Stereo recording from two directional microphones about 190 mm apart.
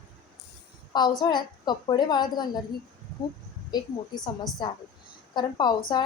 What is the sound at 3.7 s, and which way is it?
Speech, 20° left (ahead or behind).